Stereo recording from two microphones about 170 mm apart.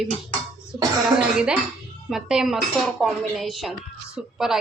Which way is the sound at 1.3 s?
5° right (ahead or behind).